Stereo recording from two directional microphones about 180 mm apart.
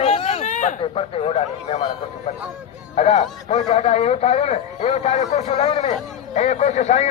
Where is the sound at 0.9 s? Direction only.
35° left (ahead or behind).